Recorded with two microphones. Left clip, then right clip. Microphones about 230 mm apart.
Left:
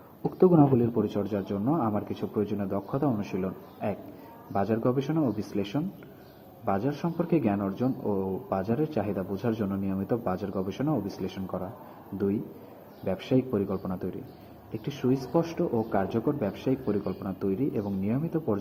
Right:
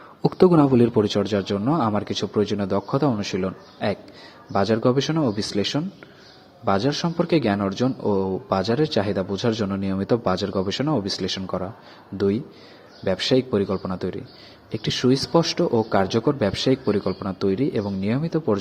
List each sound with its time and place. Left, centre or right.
0.2 s speech: right
13.1 s speech: right